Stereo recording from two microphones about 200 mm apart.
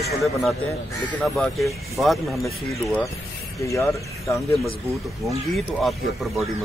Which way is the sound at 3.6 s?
15° left (ahead or behind).